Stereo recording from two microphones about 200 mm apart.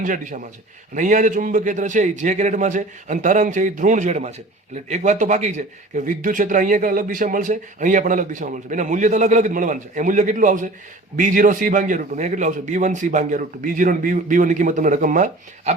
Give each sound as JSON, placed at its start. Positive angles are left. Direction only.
{"t": 0.0, "sound": "a man's voice", "side_deg": -40}